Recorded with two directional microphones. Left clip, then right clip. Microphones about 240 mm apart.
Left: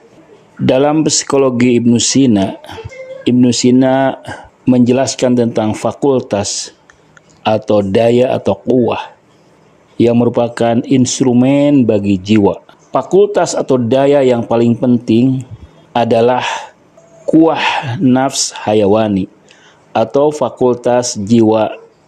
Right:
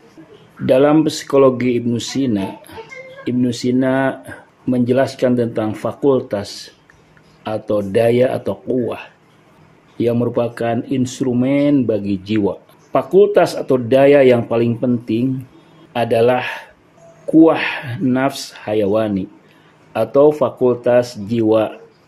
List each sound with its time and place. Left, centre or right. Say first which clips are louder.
0.7 s speech: left 1 dB; left